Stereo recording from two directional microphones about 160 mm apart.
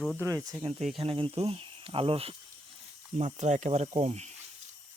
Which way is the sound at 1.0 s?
35° right (ahead or behind).